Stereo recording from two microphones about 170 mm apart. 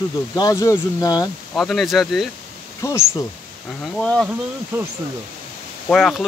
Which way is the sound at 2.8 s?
15° left (ahead or behind).